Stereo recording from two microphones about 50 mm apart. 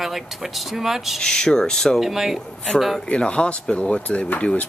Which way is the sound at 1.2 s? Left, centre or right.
Centre.